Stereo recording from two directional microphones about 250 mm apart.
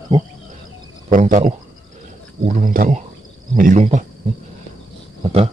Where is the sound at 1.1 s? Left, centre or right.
Right.